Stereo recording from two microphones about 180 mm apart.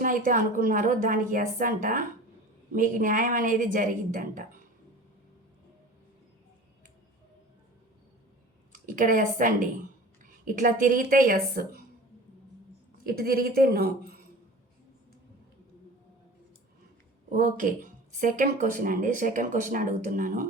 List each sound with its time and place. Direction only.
0.0 s speech: 50° right (ahead or behind)
8.7 s a woman's voice: 50° right (ahead or behind)
13.1 s a woman's voice: 55° right (ahead or behind)
17.3 s speech: 45° right (ahead or behind)